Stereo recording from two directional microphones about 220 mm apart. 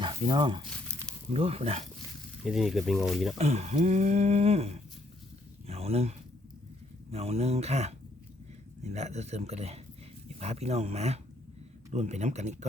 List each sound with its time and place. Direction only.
0.0 s speech: 20° right (ahead or behind)
2.4 s speech: centre (ahead or behind)
3.3 s speech: 30° right (ahead or behind)